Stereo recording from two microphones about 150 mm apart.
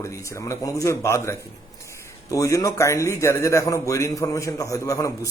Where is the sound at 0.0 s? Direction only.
20° left (ahead or behind).